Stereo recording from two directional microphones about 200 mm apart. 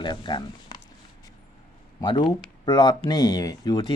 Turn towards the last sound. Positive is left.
turn(degrees=20)  # may be behind; listen again after turning